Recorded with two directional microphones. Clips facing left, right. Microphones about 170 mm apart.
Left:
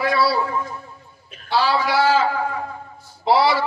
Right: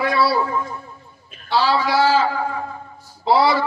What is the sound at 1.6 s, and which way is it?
A man's voice, 35° right (ahead or behind).